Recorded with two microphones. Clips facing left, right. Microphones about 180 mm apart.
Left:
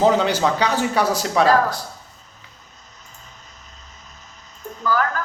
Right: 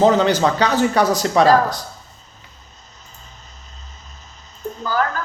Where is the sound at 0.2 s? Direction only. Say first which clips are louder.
Right 3 dB; 10° left (ahead or behind).